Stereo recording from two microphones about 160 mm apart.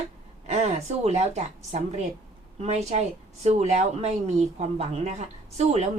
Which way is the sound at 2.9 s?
45° right (ahead or behind).